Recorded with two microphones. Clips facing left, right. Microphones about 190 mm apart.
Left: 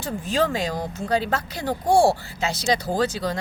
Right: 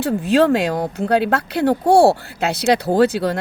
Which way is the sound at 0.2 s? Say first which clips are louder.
Right 8 dB; 65° right (ahead or behind).